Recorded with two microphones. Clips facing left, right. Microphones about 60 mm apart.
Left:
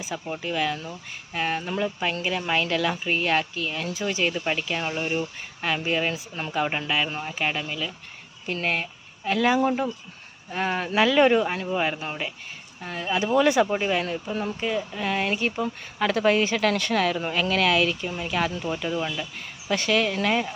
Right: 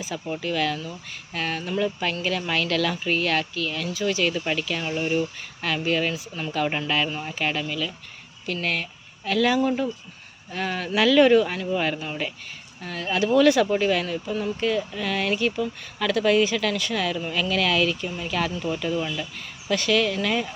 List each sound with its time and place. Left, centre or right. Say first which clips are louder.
0.0 s speech: right 2 dB; centre
4.9 s speech: right 3 dB; centre; by 6.7 s left
6.7 s speech: right 1 dB; centre; by 14.5 s left
14.6 s speech: right 2 dB; centre
19.6 s speech: right 1 dB; left